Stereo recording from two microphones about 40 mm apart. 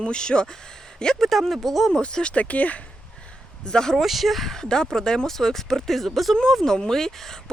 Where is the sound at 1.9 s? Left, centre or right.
Left.